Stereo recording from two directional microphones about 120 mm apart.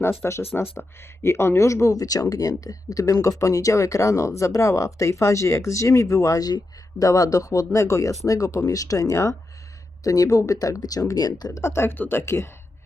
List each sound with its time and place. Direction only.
0.0 s speech: 20° left (ahead or behind)
11.6 s speech: 20° left (ahead or behind)